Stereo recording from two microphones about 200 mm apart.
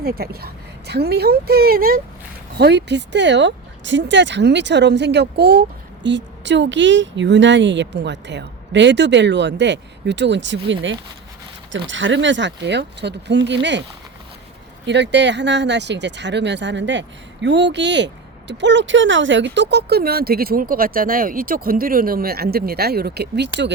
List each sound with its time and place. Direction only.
0.0 s a woman's voice: 50° right (ahead or behind)
11.9 s speech: 70° right (ahead or behind)
14.8 s speech: 60° right (ahead or behind)